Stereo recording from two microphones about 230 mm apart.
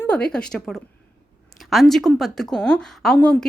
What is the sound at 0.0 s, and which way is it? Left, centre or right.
Speech, centre.